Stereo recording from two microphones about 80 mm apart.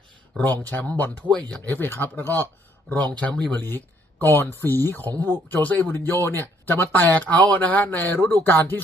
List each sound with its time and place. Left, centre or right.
0.3 s speech: left
1.7 s speech: left
2.9 s speech: centre
4.2 s speech: left